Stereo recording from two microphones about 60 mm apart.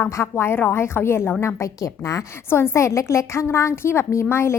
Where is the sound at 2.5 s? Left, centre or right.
Left.